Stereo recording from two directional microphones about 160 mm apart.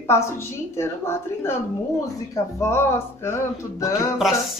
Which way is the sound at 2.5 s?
15° left (ahead or behind).